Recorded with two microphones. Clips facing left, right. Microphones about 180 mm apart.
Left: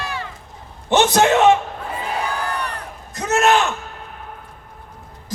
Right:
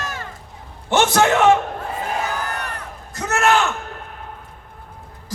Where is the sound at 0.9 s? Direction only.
20° left (ahead or behind).